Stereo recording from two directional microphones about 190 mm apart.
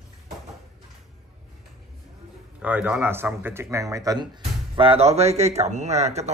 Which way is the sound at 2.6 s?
10° right (ahead or behind).